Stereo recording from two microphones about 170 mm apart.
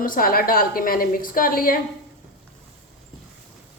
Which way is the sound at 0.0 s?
55° left (ahead or behind).